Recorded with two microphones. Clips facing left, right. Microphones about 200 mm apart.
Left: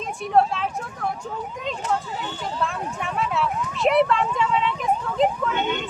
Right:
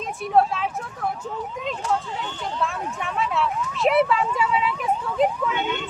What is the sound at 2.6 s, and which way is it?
Speech, centre (ahead or behind).